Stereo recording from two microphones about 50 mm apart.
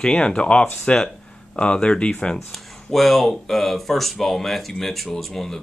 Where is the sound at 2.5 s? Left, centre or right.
Centre.